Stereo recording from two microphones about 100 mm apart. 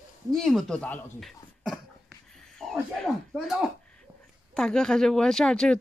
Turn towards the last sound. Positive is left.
turn(degrees=5)  # may be behind; listen again after turning